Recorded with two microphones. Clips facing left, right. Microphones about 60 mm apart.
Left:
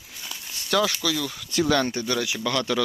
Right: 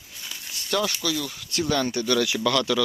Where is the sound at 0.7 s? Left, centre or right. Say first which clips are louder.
Left 2 dB; left.